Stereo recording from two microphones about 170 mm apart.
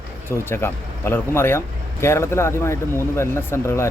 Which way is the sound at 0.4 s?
15° left (ahead or behind).